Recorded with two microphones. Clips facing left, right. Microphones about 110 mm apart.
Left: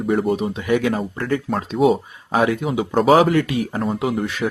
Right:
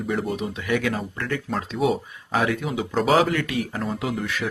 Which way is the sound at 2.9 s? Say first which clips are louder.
Left 6 dB; 45° left (ahead or behind).